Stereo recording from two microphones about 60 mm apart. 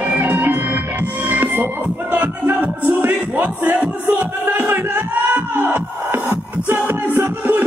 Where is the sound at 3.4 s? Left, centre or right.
Right.